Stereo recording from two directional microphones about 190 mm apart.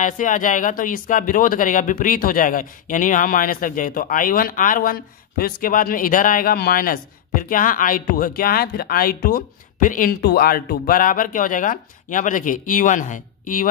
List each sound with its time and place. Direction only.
0.0 s speech: 45° left (ahead or behind)